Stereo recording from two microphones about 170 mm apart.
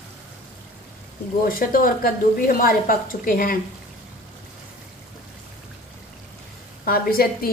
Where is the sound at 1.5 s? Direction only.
55° left (ahead or behind).